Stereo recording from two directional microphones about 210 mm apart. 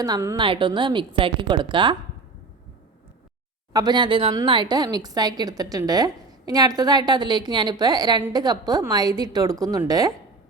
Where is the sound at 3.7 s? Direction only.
20° right (ahead or behind).